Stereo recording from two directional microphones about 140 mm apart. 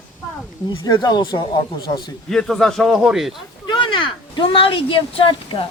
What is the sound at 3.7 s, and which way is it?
Speech, 35° left (ahead or behind).